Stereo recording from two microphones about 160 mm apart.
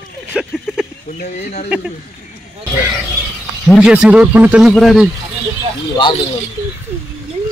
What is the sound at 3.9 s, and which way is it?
Speech, 5° right (ahead or behind).